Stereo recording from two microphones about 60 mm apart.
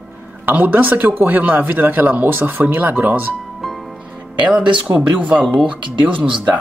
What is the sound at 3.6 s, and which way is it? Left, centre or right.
Music, centre.